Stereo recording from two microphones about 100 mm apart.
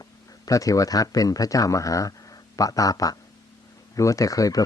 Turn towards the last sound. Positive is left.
turn(degrees=35)  # may be behind; listen again after turning